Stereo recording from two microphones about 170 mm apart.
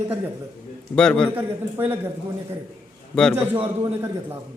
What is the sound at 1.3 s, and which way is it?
Speech, 15° right (ahead or behind).